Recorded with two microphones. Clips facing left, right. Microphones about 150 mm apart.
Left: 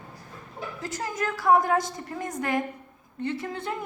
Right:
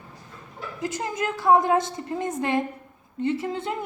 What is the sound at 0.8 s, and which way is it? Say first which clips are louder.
A woman's voice: right 3 dB; 20° right (ahead or behind).